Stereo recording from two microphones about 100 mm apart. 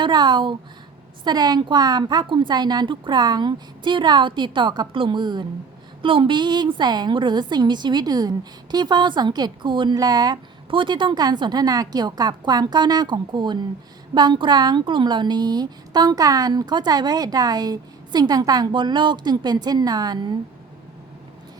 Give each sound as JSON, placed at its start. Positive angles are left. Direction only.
{"t": 0.0, "sound": "a woman's voice", "side_deg": -45}
{"t": 6.0, "sound": "a woman's voice", "side_deg": -60}
{"t": 10.7, "sound": "a woman's voice", "side_deg": -55}